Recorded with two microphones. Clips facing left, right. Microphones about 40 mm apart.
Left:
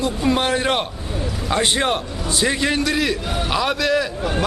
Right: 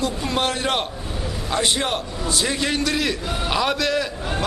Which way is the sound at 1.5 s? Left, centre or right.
Left.